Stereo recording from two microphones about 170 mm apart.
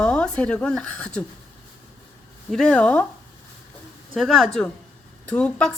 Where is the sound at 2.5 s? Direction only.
5° left (ahead or behind).